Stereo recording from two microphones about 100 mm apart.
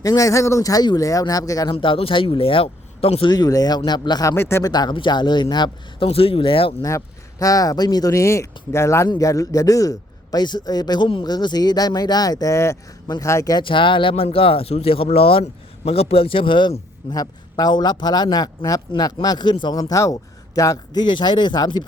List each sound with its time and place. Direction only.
0.0 s speech: 35° left (ahead or behind)
1.7 s speech: 65° left (ahead or behind)
3.2 s speech: 40° left (ahead or behind)
4.4 s speech: 25° left (ahead or behind)
4.6 s speech: 45° left (ahead or behind)
6.1 s speech: 65° left (ahead or behind)
6.8 s speech: 35° left (ahead or behind)
13.6 s speech: 55° left (ahead or behind)
17.1 s speech: 40° left (ahead or behind)
19.8 s speech: 30° left (ahead or behind)
21.0 s speech: 50° left (ahead or behind)